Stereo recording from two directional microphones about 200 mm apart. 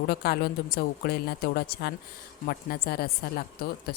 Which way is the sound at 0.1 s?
50° left (ahead or behind).